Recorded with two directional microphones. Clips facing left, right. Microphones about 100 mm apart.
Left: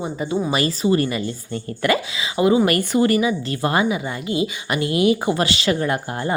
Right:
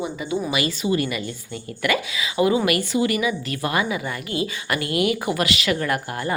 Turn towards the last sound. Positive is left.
turn(degrees=25)  # may be behind; listen again after turning